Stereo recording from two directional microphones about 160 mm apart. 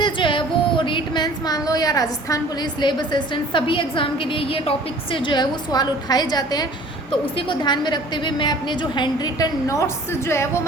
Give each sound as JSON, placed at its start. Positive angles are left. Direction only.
{"t": 0.0, "sound": "music", "side_deg": 30}
{"t": 5.1, "sound": "a woman's voice", "side_deg": 30}